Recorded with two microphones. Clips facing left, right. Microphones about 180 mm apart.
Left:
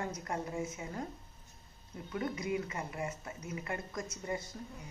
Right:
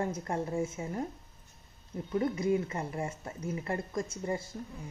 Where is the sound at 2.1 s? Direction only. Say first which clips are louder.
Right 7 dB; 30° right (ahead or behind).